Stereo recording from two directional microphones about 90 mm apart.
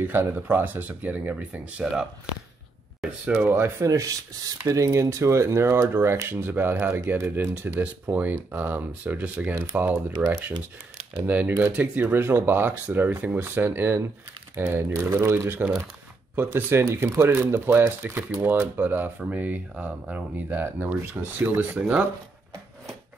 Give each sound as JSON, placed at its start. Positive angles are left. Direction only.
{"t": 0.0, "sound": "speech", "side_deg": -25}
{"t": 3.5, "sound": "speech", "side_deg": -30}
{"t": 10.1, "sound": "speech", "side_deg": -40}
{"t": 11.2, "sound": "speech", "side_deg": -15}